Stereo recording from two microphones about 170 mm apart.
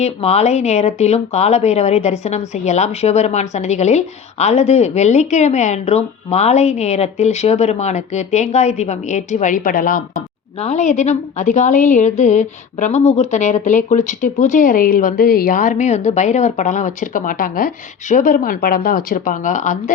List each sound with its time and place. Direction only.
0.0 s speech: 40° left (ahead or behind); by 10.0 s 55° left (ahead or behind)
10.6 s a woman's voice: 40° left (ahead or behind)